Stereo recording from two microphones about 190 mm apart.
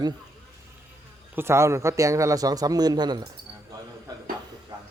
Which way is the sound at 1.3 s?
15° right (ahead or behind).